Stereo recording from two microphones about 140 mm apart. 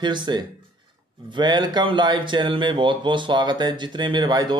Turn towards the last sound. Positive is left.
turn(degrees=-30)  # may be behind; listen again after turning